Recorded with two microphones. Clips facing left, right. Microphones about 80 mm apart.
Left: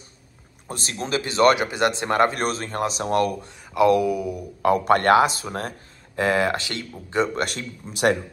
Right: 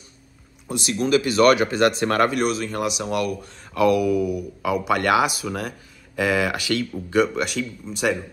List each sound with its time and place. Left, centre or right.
0.7 s speech: left
2.3 s speech: left
3.4 s speech: left
4.6 s speech: left
7.3 s speech: left